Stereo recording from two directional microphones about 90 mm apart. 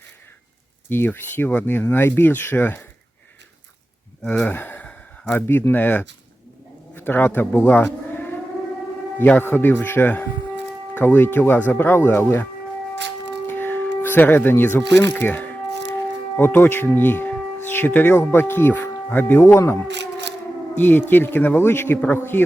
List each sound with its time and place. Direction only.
0.9 s speech: 20° left (ahead or behind)
4.3 s speech: 15° left (ahead or behind)
13.5 s music: 20° left (ahead or behind)
15.1 s speech: 15° left (ahead or behind)